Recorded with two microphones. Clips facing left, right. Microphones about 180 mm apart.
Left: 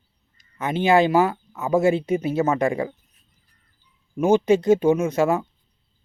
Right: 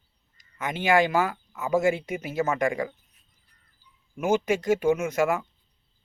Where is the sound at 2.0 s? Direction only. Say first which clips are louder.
Left 10 dB; 30° left (ahead or behind).